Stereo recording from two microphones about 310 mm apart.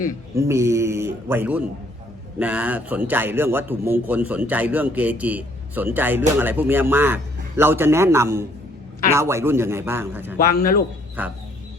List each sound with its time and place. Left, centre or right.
0.3 s a man's voice: centre
10.3 s a man's voice: left
11.2 s music: centre